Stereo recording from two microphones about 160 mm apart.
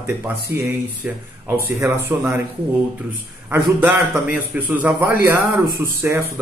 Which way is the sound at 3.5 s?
15° right (ahead or behind).